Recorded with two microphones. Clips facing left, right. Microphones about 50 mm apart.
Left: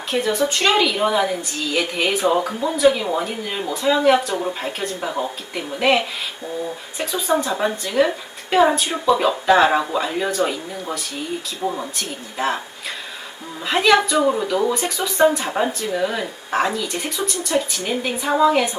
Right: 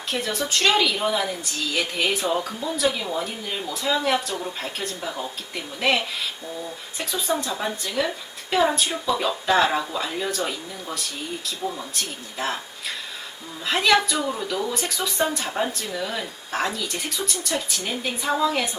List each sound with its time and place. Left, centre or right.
0.1 s a woman's voice: centre
7.1 s speech: left
11.6 s speech: left
13.7 s a woman's voice: centre